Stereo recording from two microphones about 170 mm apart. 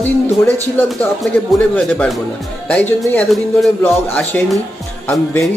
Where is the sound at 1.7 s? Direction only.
5° left (ahead or behind).